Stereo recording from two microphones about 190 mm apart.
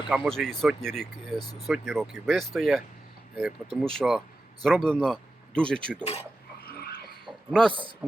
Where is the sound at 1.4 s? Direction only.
20° left (ahead or behind).